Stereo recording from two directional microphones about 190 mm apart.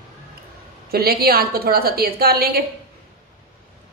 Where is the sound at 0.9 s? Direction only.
55° right (ahead or behind).